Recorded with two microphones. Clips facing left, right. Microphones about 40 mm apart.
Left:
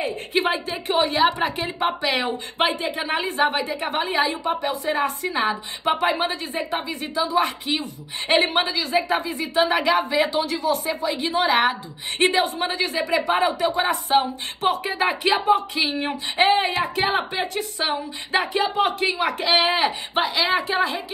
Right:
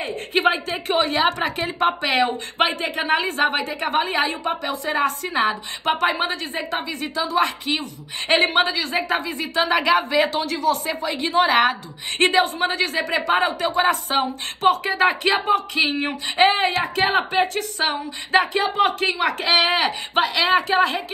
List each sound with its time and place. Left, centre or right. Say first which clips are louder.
0.3 s a woman's voice: right 4 dB; right
5.3 s a woman's voice: right 2 dB; right
6.3 s a woman's voice: even; right
10.4 s a woman's voice: right 2 dB; right
10.9 s speech: even; right
15.8 s speech: right 2 dB; right